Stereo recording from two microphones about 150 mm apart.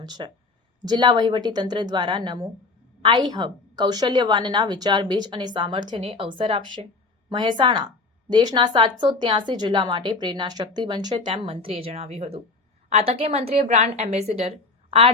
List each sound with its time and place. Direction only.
0.0 s a woman's voice: 25° right (ahead or behind)